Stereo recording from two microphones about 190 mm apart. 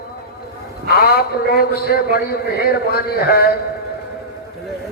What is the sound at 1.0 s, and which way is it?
A man's voice, 55° left (ahead or behind).